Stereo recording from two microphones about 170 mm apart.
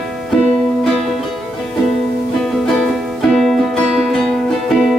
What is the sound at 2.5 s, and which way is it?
Music, centre (ahead or behind).